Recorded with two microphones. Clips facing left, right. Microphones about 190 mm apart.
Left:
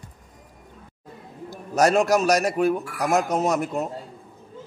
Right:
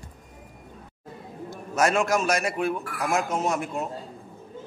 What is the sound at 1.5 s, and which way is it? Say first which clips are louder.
A man's voice: left 4 dB; 35° left (ahead or behind).